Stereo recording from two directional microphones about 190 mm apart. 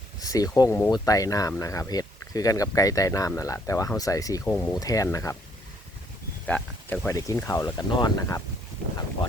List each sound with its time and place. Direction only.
0.2 s speech: 20° left (ahead or behind)
6.5 s speech: 5° left (ahead or behind)
7.1 s speech: 15° left (ahead or behind)